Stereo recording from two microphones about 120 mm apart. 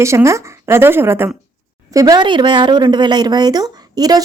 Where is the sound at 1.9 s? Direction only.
35° right (ahead or behind).